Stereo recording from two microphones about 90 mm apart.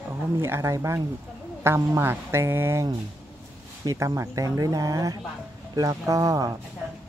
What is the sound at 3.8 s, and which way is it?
Speech, 35° right (ahead or behind).